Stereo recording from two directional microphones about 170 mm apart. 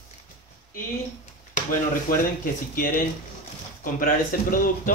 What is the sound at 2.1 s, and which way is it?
Speech, 55° left (ahead or behind).